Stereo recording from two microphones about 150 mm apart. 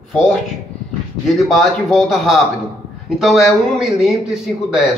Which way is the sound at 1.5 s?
Centre (ahead or behind).